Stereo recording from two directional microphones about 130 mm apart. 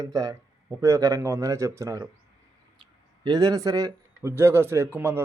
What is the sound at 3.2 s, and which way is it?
Speech, 30° right (ahead or behind).